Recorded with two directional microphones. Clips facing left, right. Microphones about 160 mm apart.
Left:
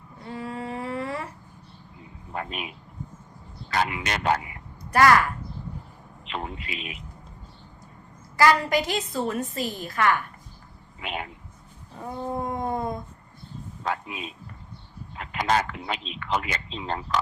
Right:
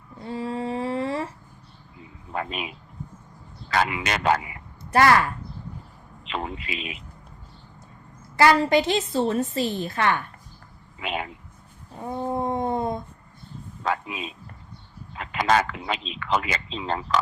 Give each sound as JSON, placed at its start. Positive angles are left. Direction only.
{"t": 0.3, "sound": "humming", "side_deg": -25}
{"t": 2.3, "sound": "speech", "side_deg": -90}
{"t": 4.9, "sound": "a woman's voice", "side_deg": -25}
{"t": 6.2, "sound": "a man's voice", "side_deg": -90}
{"t": 8.4, "sound": "a woman's voice", "side_deg": -30}
{"t": 11.0, "sound": "a sound", "side_deg": -90}
{"t": 12.2, "sound": "a sound", "side_deg": -25}
{"t": 13.8, "sound": "speech", "side_deg": -90}